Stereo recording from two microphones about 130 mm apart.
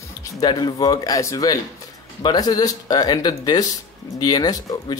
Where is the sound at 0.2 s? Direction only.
30° left (ahead or behind).